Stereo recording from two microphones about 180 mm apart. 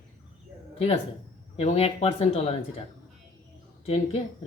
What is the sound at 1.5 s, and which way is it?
A man's voice, 35° left (ahead or behind).